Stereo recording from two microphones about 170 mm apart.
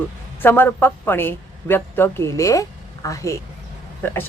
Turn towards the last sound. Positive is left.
turn(degrees=10)  # may be behind; listen again after turning